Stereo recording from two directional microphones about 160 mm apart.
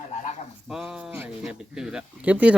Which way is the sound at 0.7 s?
5° right (ahead or behind).